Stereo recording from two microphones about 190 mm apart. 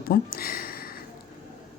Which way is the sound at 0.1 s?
50° left (ahead or behind).